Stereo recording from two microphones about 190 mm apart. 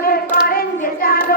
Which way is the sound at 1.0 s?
50° left (ahead or behind).